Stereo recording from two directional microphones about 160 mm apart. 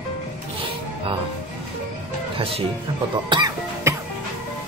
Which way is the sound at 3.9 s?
15° right (ahead or behind).